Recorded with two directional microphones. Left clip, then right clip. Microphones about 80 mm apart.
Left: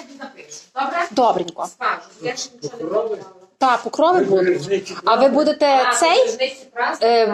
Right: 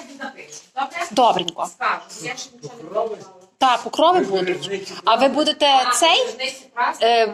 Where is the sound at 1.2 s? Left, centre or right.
Centre.